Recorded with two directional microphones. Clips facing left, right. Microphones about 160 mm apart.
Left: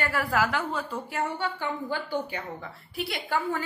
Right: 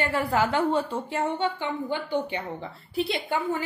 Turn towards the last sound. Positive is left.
turn(degrees=-20)  # may be behind; listen again after turning